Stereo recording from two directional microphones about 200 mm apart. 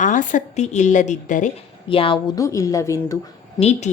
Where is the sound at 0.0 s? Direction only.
40° left (ahead or behind).